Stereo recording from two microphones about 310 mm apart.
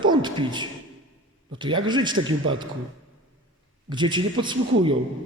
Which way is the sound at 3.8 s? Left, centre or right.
Centre.